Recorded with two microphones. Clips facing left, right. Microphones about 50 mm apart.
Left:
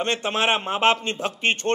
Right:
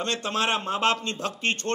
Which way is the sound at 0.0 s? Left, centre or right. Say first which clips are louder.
Left 4 dB; left.